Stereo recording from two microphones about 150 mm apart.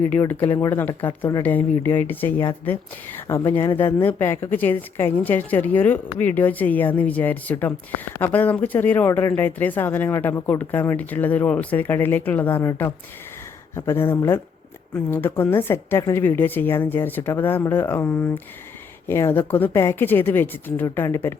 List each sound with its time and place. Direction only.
0.3 s speech: 10° left (ahead or behind)